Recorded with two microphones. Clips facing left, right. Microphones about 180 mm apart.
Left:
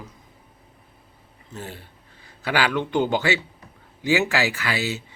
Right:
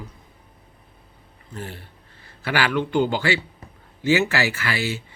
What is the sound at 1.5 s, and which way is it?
Speech, 15° left (ahead or behind).